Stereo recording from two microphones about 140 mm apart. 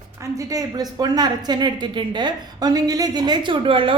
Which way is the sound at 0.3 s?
25° right (ahead or behind).